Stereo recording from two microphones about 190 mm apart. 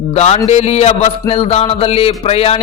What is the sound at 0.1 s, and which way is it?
A man's voice, 35° left (ahead or behind).